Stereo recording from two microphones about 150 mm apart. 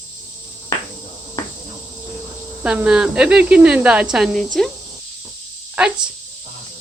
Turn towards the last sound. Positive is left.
turn(degrees=-5)  # may be behind; listen again after turning